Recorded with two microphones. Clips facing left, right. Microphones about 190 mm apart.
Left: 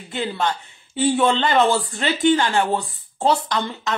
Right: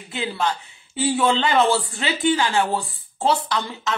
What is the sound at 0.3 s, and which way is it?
Speech, 5° right (ahead or behind).